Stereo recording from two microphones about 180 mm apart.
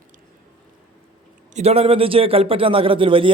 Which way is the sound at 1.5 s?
35° right (ahead or behind).